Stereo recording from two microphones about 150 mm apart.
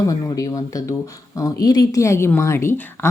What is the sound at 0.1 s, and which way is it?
A woman's voice, 20° left (ahead or behind).